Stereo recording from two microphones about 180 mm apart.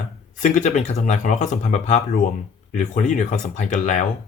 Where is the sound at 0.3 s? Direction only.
45° left (ahead or behind).